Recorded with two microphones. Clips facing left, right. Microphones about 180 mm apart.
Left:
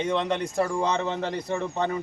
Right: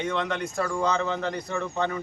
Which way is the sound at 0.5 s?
30° left (ahead or behind).